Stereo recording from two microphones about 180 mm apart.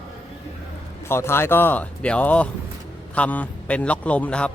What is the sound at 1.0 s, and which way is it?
Speech, 15° left (ahead or behind).